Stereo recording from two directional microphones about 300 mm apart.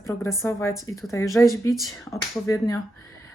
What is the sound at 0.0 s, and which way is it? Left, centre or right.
A woman's voice, centre.